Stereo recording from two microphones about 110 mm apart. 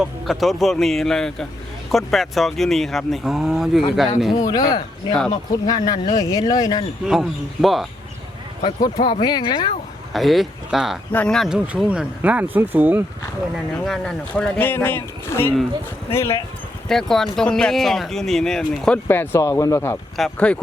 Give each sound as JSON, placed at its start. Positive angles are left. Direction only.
{"t": 0.0, "sound": "speech", "side_deg": 0}
{"t": 4.4, "sound": "speech", "side_deg": 35}
{"t": 7.1, "sound": "speech", "side_deg": 0}
{"t": 8.6, "sound": "speech", "side_deg": 45}
{"t": 10.1, "sound": "speech", "side_deg": 0}
{"t": 11.1, "sound": "speech", "side_deg": 15}
{"t": 11.3, "sound": "speech", "side_deg": -5}
{"t": 13.8, "sound": "speech", "side_deg": 5}
{"t": 14.6, "sound": "speech", "side_deg": 20}
{"t": 16.9, "sound": "speech", "side_deg": 5}
{"t": 19.0, "sound": "speech", "side_deg": 20}
{"t": 19.4, "sound": "speech", "side_deg": 30}
{"t": 20.1, "sound": "speech", "side_deg": 5}